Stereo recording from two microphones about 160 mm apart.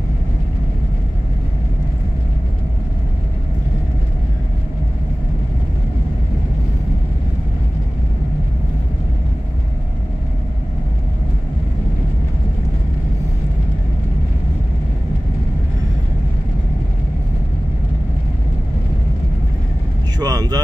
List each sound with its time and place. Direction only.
20.2 s vehicle: 25° right (ahead or behind)